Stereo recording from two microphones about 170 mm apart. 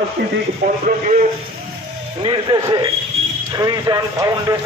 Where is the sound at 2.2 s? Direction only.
25° right (ahead or behind).